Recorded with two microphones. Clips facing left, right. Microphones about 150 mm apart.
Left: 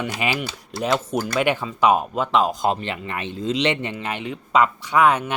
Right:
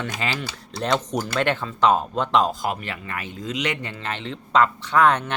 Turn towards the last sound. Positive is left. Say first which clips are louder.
# left 1 dB
turn(degrees=10)  # may be behind; listen again after turning